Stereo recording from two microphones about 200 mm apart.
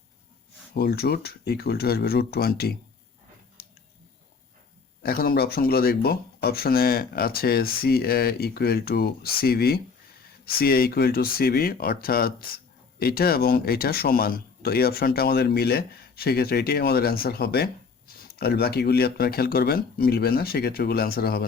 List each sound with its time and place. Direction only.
0.7 s speech: 55° left (ahead or behind)
5.0 s speech: 50° left (ahead or behind)